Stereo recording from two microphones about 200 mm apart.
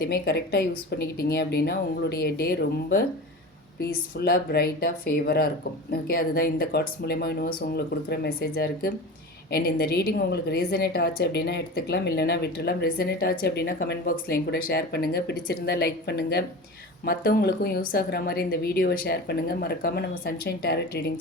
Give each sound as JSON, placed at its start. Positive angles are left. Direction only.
{"t": 0.0, "sound": "a woman's voice", "side_deg": 50}